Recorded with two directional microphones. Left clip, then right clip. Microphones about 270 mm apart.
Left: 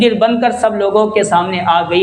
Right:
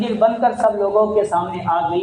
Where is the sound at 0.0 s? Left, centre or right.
Left.